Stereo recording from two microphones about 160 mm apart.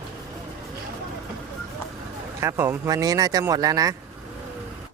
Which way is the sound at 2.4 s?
15° right (ahead or behind).